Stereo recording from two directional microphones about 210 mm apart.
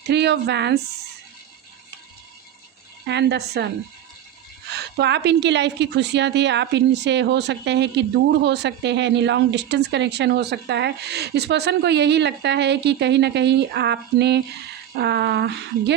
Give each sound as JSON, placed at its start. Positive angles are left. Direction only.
{"t": 0.1, "sound": "speech", "side_deg": -55}
{"t": 3.1, "sound": "speech", "side_deg": -55}
{"t": 4.7, "sound": "speech", "side_deg": -55}